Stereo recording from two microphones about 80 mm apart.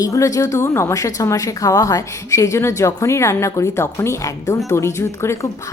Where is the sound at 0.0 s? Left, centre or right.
Left.